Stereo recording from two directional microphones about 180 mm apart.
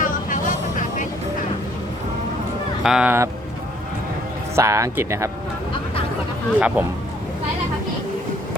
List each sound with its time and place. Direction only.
0.0 s vehicle: 45° left (ahead or behind)
2.8 s speech: 5° right (ahead or behind)
4.5 s speech: 15° right (ahead or behind)
6.6 s speech: 5° right (ahead or behind)